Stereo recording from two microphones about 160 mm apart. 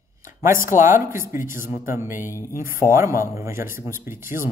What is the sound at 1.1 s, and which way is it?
Speech, 15° right (ahead or behind).